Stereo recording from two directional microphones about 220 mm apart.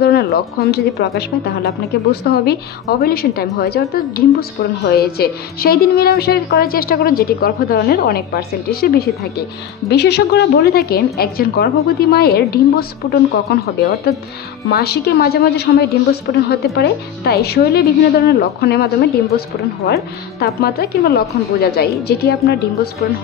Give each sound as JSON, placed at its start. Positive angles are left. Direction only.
{"t": 0.0, "sound": "a woman's voice", "side_deg": 45}